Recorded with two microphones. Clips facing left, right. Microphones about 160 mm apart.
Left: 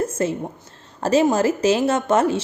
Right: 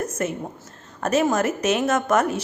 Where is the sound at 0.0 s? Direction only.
30° left (ahead or behind).